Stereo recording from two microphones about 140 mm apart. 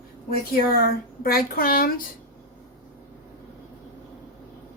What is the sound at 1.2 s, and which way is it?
Speech, 90° left.